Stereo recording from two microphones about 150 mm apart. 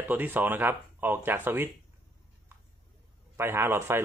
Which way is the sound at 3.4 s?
15° right (ahead or behind).